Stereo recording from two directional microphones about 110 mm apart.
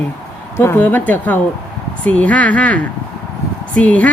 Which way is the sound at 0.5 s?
20° left (ahead or behind).